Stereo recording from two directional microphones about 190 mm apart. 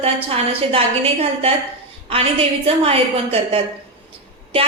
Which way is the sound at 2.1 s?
30° right (ahead or behind).